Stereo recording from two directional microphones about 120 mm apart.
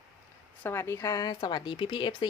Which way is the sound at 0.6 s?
20° left (ahead or behind).